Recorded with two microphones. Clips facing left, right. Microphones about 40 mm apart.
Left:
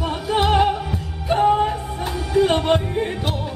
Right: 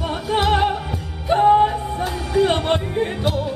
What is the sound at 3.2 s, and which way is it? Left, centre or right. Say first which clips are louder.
Music: right 4 dB; centre.